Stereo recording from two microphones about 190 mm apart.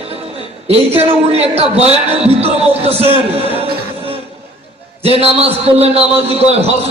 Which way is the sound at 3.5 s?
30° right (ahead or behind).